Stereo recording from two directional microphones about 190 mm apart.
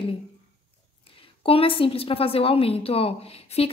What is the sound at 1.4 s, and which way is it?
A woman's voice, 30° left (ahead or behind).